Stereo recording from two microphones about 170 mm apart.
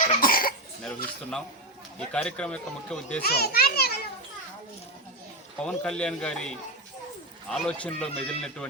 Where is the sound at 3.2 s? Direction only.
65° left (ahead or behind).